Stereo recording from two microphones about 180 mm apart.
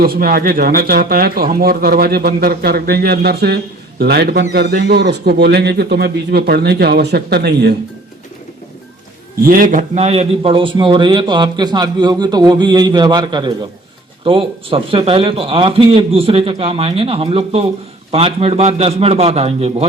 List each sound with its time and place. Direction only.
0.0 s speech: 55° right (ahead or behind)
9.3 s a man's voice: 50° right (ahead or behind); by 19.9 s 35° right (ahead or behind)